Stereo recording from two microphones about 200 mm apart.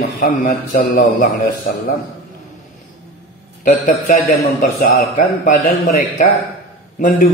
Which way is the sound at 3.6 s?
40° left (ahead or behind).